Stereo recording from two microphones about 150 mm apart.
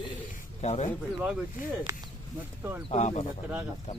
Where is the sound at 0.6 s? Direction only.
50° left (ahead or behind).